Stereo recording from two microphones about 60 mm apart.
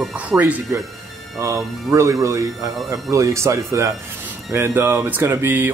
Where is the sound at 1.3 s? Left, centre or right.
Right.